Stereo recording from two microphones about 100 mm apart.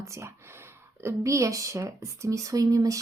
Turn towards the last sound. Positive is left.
turn(degrees=-35)  # may be behind; listen again after turning